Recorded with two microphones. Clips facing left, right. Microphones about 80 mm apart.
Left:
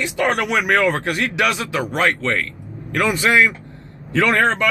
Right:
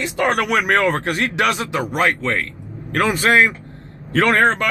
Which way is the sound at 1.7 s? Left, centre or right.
Centre.